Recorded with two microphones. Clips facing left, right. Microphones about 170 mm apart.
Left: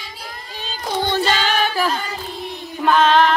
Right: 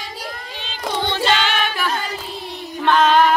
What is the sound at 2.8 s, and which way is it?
Music, centre (ahead or behind).